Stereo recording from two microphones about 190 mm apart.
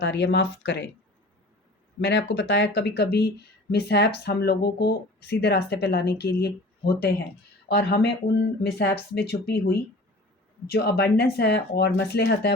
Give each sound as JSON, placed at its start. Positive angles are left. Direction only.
{"t": 0.0, "sound": "speech", "side_deg": 60}
{"t": 2.0, "sound": "speech", "side_deg": 60}